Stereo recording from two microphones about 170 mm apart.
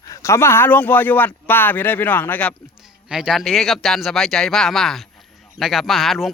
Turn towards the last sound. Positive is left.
turn(degrees=0)  # may be behind; listen again after turning